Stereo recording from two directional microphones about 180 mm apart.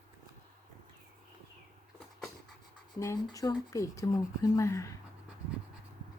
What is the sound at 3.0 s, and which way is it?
A woman's voice, 20° left (ahead or behind).